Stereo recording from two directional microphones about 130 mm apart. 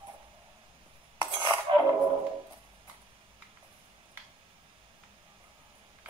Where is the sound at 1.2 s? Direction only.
35° right (ahead or behind).